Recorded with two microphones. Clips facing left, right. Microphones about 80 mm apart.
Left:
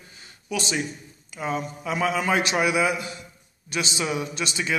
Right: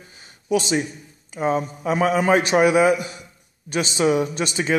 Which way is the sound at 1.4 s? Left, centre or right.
Right.